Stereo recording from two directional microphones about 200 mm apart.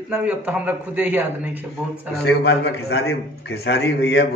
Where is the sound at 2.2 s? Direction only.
55° left (ahead or behind).